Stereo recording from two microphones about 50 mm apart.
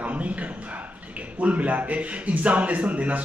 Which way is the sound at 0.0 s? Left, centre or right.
Right.